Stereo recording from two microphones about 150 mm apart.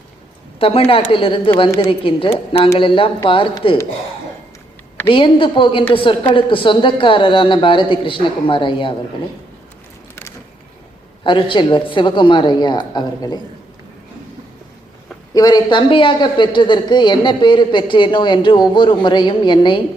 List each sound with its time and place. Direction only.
0.6 s a man's voice: 40° left (ahead or behind)
5.0 s a man's voice: 35° left (ahead or behind)
11.2 s a man's voice: 35° left (ahead or behind)
15.3 s a man's voice: 25° left (ahead or behind)